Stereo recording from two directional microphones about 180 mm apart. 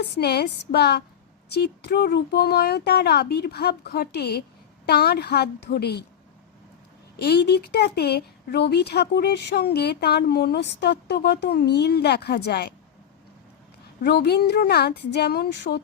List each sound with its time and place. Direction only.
0.2 s speech: 65° left (ahead or behind)
7.2 s speech: 65° left (ahead or behind)
14.0 s speech: 65° left (ahead or behind)